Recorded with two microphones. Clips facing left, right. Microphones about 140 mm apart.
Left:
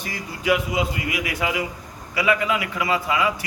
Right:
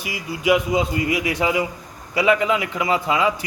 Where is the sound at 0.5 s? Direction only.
25° right (ahead or behind).